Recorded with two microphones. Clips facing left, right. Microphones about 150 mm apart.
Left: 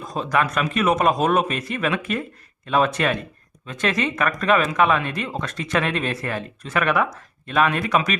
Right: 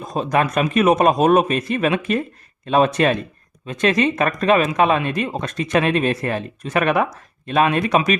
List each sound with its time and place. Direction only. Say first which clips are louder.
0.0 s speech: right 3 dB; 20° right (ahead or behind)